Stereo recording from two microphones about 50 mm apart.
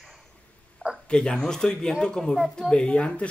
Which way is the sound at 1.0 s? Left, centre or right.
Centre.